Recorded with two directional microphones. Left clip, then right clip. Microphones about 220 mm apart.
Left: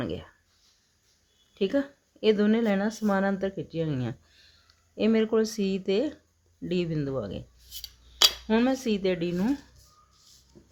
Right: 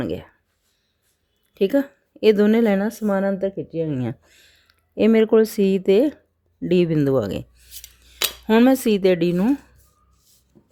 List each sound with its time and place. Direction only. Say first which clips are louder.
0.0 s speech: right 7 dB; 30° right (ahead or behind)
1.5 s speech: right 7 dB; 35° right (ahead or behind)
8.4 s speech: right 9 dB; 40° right (ahead or behind)
10.5 s music: right 4 dB; 10° right (ahead or behind)